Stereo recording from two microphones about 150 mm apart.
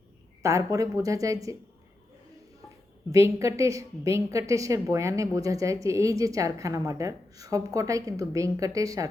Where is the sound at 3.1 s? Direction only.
20° right (ahead or behind).